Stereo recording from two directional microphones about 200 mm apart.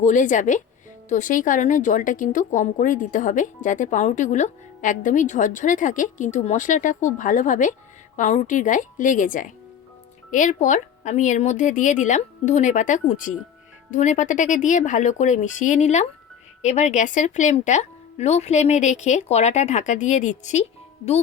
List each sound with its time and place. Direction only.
0.0 s a woman's voice: 40° left (ahead or behind)